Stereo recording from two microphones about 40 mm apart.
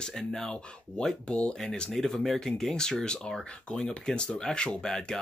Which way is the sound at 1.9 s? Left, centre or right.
Centre.